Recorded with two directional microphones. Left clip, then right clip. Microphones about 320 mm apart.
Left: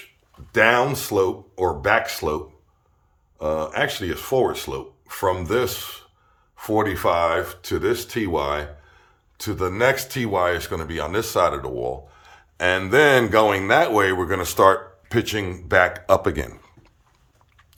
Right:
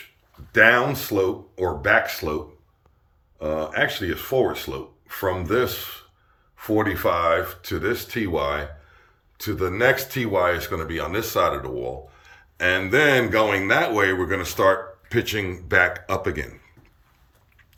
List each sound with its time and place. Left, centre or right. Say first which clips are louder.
0.5 s speech: right 1 dB; centre